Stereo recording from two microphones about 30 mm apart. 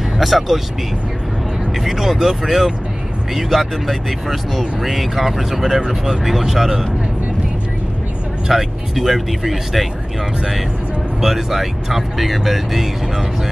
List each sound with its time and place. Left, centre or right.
0.2 s speech: centre
1.9 s speech: centre
8.5 s speech: centre
11.1 s speech: centre